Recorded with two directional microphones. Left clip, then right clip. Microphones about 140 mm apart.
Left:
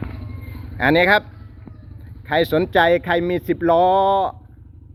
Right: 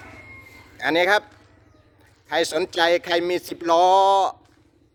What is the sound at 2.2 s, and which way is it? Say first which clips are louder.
Speech: left 4 dB; 25° right (ahead or behind).